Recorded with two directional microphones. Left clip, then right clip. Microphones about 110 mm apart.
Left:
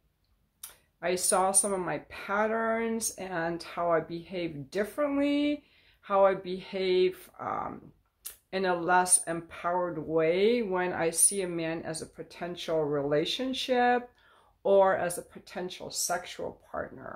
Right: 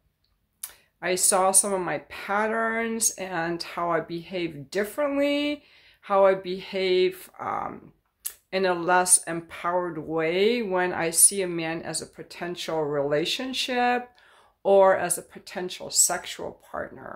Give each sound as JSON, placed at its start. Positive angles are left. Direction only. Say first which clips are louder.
{"t": 0.6, "sound": "speech", "louder": "right 3 dB", "side_deg": -25}